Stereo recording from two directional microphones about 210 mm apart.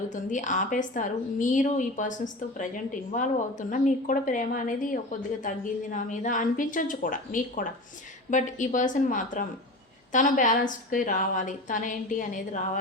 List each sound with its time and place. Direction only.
0.1 s a woman's voice: 35° left (ahead or behind)